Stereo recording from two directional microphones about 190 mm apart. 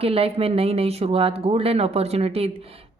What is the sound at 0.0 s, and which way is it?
Speech, 30° right (ahead or behind).